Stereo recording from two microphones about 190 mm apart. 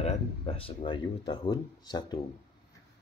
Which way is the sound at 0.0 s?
30° left (ahead or behind).